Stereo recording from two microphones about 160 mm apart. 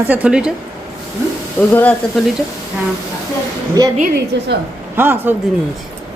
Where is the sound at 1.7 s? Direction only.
10° left (ahead or behind).